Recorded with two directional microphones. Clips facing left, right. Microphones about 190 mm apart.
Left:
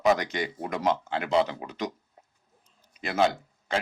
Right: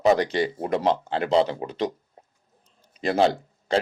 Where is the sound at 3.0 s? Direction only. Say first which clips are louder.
Right 4 dB; 35° right (ahead or behind).